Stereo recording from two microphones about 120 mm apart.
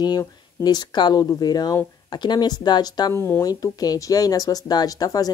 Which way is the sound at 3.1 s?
20° left (ahead or behind).